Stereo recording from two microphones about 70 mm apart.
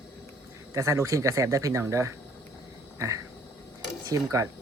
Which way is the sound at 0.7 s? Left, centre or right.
Right.